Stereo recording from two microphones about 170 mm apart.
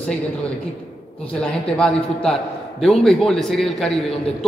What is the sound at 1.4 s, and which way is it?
A man's voice, centre (ahead or behind).